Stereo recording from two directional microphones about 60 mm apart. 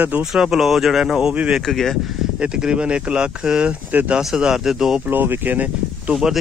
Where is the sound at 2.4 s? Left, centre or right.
Centre.